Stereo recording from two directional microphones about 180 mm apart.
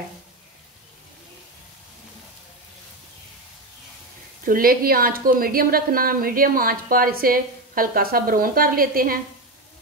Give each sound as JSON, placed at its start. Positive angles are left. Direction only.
{"t": 4.5, "sound": "a woman's voice", "side_deg": -55}